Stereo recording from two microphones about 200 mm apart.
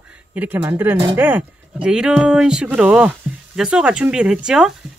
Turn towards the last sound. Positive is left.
turn(degrees=-5)  # may be behind; listen again after turning